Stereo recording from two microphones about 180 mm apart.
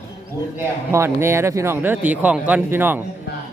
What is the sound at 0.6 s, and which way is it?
Speech, 15° right (ahead or behind).